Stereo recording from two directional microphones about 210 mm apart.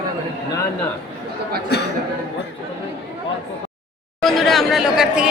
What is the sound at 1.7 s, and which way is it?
Speech, 50° left (ahead or behind).